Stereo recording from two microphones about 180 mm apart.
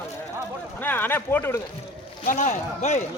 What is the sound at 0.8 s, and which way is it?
Speech, 10° left (ahead or behind).